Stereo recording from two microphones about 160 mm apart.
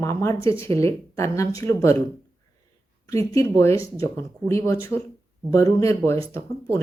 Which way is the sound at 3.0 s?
20° left (ahead or behind).